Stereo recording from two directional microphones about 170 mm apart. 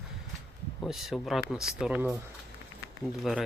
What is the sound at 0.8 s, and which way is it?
Speech, centre (ahead or behind).